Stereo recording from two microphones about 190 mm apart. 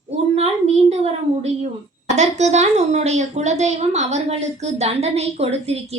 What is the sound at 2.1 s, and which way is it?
A woman's voice, 35° right (ahead or behind).